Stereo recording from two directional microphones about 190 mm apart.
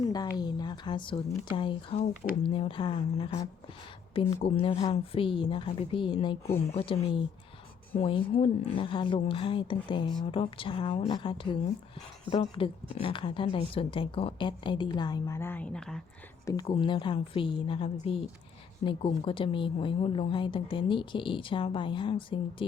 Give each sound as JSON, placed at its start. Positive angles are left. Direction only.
{"t": 0.1, "sound": "a woman's voice", "side_deg": 20}
{"t": 16.5, "sound": "a woman's voice", "side_deg": 25}